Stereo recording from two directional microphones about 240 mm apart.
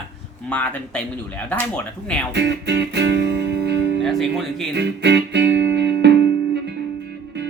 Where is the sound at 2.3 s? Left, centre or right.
Right.